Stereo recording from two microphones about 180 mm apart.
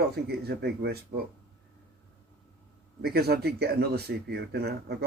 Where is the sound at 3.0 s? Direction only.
60° right (ahead or behind).